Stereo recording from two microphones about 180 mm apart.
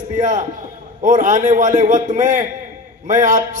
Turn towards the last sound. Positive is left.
turn(degrees=-45)  # may be behind; listen again after turning